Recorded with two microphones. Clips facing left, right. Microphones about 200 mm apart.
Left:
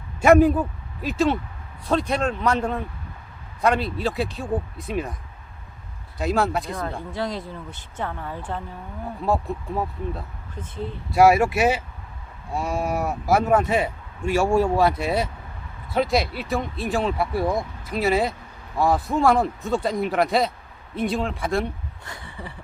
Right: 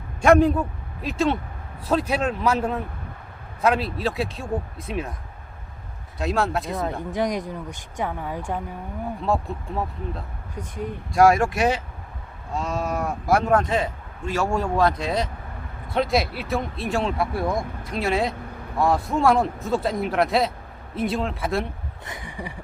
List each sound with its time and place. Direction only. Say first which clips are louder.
0.2 s speech: left 1 dB; 5° left (ahead or behind)
6.1 s speech: left 1 dB; centre (ahead or behind)
7.1 s speech: right 4 dB; 15° right (ahead or behind)
9.2 s speech: left 2 dB; centre (ahead or behind)
10.5 s speech: right 1 dB; 15° right (ahead or behind)
11.1 s speech: left 1 dB; 5° left (ahead or behind)
22.0 s speech: right 4 dB; 20° right (ahead or behind)